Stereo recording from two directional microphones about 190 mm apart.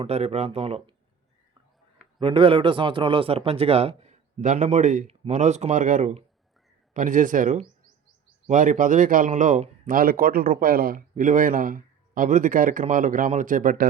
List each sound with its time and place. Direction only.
0.0 s a man's voice: 30° right (ahead or behind)
2.2 s a man's voice: 25° right (ahead or behind); by 13.8 s 45° right (ahead or behind)